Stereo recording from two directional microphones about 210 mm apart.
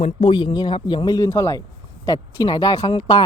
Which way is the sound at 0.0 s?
25° left (ahead or behind).